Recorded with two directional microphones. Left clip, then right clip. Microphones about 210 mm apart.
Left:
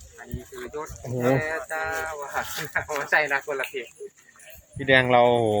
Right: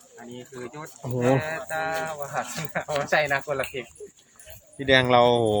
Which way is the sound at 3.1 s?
55° right (ahead or behind).